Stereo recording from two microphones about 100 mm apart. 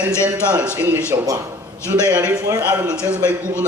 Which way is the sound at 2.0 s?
15° right (ahead or behind).